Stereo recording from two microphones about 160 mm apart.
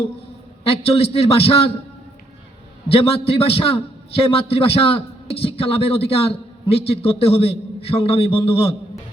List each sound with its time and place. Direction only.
0.6 s a man's voice: 40° left (ahead or behind)
2.9 s a man's voice: 40° left (ahead or behind)